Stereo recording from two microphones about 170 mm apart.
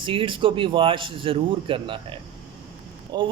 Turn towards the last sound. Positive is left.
turn(degrees=-25)  # may be behind; listen again after turning